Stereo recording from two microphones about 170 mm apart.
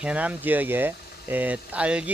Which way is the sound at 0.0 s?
5° right (ahead or behind).